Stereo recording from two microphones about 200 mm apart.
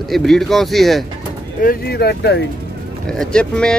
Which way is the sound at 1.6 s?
50° left (ahead or behind).